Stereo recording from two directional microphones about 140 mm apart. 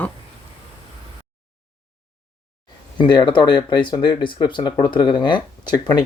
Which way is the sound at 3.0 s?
35° left (ahead or behind).